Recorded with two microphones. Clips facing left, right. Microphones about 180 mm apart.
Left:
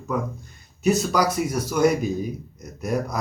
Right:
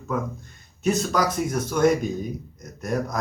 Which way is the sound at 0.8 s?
10° left (ahead or behind).